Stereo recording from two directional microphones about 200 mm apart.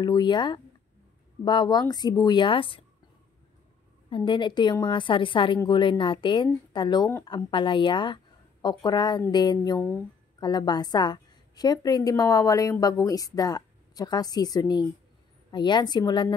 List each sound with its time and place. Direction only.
0.0 s a woman's voice: 20° left (ahead or behind)
4.1 s a woman's voice: 25° left (ahead or behind)